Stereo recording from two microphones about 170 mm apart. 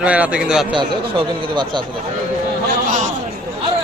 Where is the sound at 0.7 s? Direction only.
30° right (ahead or behind).